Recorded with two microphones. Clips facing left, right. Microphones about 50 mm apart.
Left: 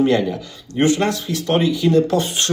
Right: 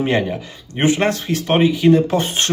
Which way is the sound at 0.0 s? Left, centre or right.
Right.